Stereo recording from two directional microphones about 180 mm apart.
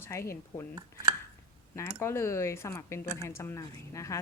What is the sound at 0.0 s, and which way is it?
Speech, 15° left (ahead or behind).